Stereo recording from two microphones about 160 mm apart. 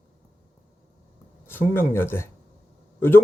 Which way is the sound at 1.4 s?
15° left (ahead or behind).